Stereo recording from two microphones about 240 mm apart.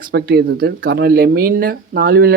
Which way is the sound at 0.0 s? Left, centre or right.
Right.